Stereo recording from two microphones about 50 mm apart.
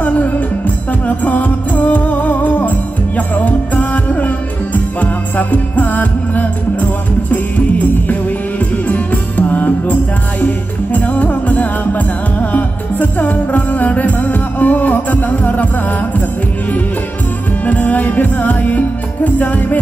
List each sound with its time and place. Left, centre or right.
1.0 s music: left
8.8 s music: left
17.6 s music: left